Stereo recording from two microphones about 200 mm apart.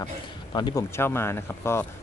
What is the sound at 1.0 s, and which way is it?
Speech, 10° left (ahead or behind).